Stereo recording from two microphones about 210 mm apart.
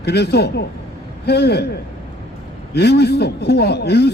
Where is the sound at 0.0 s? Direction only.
50° left (ahead or behind).